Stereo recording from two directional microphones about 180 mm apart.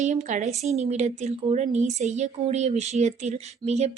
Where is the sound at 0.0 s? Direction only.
40° right (ahead or behind).